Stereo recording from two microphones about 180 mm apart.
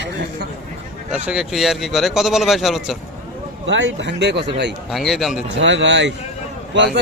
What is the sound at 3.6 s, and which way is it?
Speech, 75° right (ahead or behind).